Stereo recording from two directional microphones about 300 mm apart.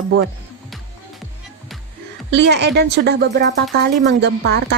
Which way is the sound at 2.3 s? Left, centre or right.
Right.